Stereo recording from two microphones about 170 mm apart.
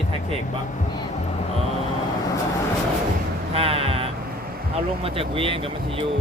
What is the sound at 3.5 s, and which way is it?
Music, 35° right (ahead or behind).